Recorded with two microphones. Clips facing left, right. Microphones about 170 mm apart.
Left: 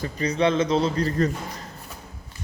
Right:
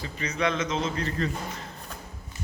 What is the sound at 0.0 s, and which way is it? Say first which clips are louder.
A man's voice: left 6 dB; 35° left (ahead or behind).